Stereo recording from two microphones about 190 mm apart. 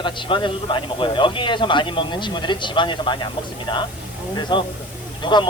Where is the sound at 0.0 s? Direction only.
25° left (ahead or behind).